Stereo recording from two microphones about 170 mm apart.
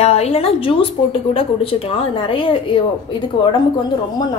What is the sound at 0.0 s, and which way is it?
A woman's voice, 40° left (ahead or behind).